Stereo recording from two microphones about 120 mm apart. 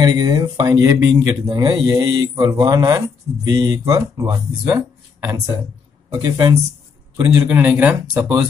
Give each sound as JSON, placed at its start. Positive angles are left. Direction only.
{"t": 0.0, "sound": "mantra", "side_deg": -35}
{"t": 3.4, "sound": "speech", "side_deg": -35}
{"t": 6.2, "sound": "mantra", "side_deg": -35}
{"t": 7.2, "sound": "speech", "side_deg": -15}